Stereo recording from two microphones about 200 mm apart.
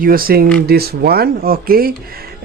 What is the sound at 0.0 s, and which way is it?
Speech, 45° right (ahead or behind).